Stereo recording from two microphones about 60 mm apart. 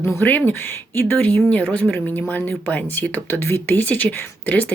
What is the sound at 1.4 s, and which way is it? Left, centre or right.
Speech, left.